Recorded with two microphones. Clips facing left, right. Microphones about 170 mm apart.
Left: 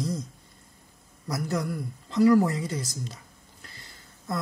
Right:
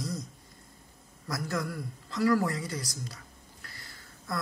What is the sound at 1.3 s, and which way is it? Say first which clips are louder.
Speech: left 4 dB; 20° left (ahead or behind).